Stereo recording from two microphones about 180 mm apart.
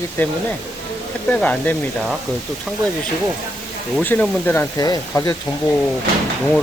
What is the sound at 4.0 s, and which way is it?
Speech, 10° left (ahead or behind).